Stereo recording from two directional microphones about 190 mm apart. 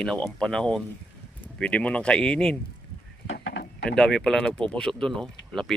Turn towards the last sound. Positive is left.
turn(degrees=5)  # may be behind; listen again after turning